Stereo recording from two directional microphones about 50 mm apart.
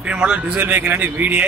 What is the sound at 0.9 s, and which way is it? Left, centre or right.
Speech, right.